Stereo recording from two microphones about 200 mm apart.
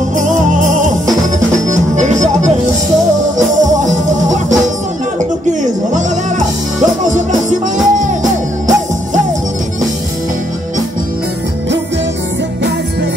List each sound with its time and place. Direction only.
0.2 s music: 40° right (ahead or behind)
7.1 s music: 40° right (ahead or behind)